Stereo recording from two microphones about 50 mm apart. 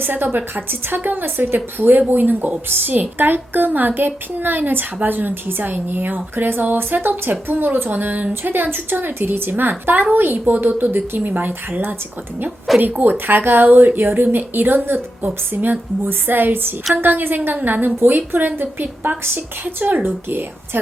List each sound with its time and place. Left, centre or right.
0.0 s a woman's voice: right
12.8 s a woman's voice: right